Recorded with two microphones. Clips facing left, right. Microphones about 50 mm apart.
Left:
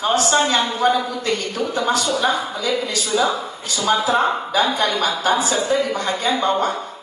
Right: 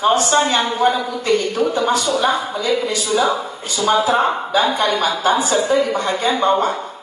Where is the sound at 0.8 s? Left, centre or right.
Right.